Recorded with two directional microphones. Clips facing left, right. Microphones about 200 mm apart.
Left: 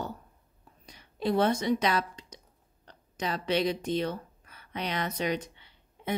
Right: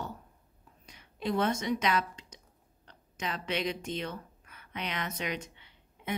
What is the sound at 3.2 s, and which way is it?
Speech, 35° left (ahead or behind).